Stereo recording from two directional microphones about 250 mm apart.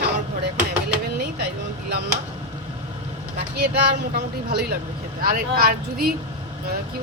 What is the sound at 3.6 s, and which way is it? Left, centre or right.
A woman's voice, right.